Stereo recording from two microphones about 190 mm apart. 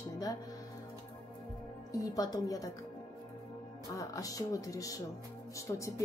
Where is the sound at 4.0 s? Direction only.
20° left (ahead or behind).